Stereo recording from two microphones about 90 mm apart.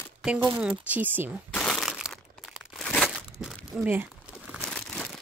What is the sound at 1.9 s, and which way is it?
Crumpling, 5° right (ahead or behind).